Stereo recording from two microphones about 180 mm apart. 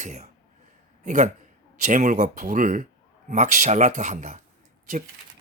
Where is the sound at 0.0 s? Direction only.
40° right (ahead or behind).